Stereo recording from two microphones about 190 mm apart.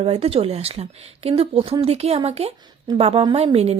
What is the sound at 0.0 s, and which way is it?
A woman's voice, 30° right (ahead or behind).